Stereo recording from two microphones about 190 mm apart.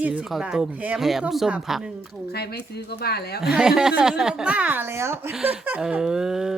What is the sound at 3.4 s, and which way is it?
A woman's voice, 5° right (ahead or behind).